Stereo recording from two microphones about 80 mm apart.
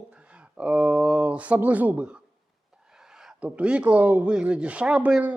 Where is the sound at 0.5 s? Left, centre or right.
Centre.